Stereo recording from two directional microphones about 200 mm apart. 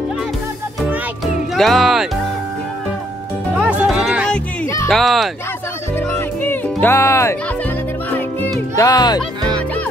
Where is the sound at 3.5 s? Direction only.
5° right (ahead or behind).